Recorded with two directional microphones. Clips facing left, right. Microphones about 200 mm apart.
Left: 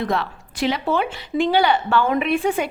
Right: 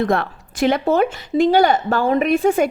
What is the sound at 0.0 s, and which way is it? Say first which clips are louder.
Speech: right 4 dB; 50° right (ahead or behind).